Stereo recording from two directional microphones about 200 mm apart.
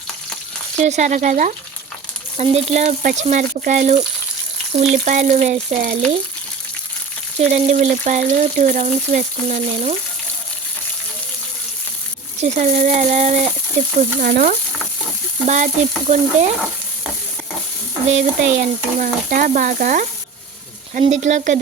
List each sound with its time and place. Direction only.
0.9 s speech: 35° right (ahead or behind)
7.3 s speech: 35° right (ahead or behind)
12.4 s speech: 40° right (ahead or behind)
18.1 s speech: 40° right (ahead or behind)
21.2 s speech: 35° right (ahead or behind)